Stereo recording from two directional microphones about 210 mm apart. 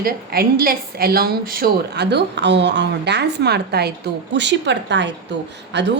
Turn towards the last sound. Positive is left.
turn(degrees=-55)  # may be behind; listen again after turning